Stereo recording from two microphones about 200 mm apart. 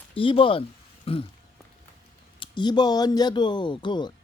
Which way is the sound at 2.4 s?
20° left (ahead or behind).